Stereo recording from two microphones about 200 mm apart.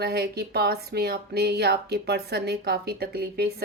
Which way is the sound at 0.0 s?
55° right (ahead or behind).